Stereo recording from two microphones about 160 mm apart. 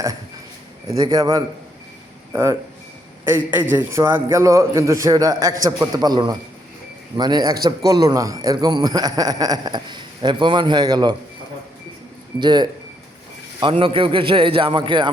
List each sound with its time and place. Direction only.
0.9 s a man's voice: 25° right (ahead or behind)
12.4 s a man's voice: 25° right (ahead or behind)